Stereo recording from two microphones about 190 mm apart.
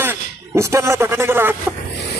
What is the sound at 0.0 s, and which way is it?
Speech, 15° right (ahead or behind).